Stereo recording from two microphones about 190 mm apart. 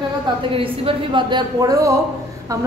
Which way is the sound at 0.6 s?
25° right (ahead or behind).